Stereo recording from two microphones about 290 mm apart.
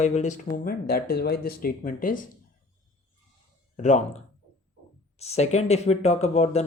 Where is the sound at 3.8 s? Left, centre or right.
Left.